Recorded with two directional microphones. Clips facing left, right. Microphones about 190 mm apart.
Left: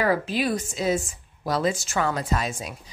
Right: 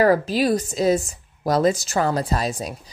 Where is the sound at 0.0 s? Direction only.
40° right (ahead or behind).